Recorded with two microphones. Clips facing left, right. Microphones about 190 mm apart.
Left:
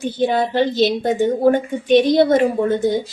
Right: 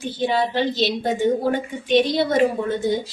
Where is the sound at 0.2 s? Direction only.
50° left (ahead or behind).